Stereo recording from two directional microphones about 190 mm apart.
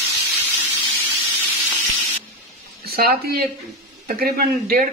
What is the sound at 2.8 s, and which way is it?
Speech, 55° right (ahead or behind).